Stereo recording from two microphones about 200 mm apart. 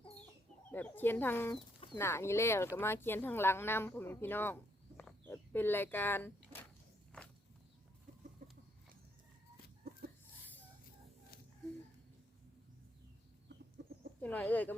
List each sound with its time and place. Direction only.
0.7 s speech: 10° left (ahead or behind)
4.9 s a sound: 10° left (ahead or behind)
7.1 s walk: 5° left (ahead or behind)
8.4 s a sound: 40° right (ahead or behind)
9.8 s chicken: 50° right (ahead or behind)
13.8 s chicken: 60° right (ahead or behind)
14.2 s speech: 10° left (ahead or behind)